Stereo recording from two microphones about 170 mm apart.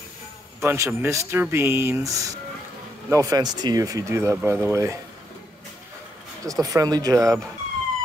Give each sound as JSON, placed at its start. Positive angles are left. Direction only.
{"t": 0.6, "sound": "speech", "side_deg": -15}
{"t": 6.4, "sound": "speech", "side_deg": -20}